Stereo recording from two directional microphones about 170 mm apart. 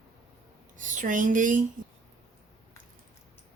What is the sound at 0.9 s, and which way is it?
Speech, 50° right (ahead or behind).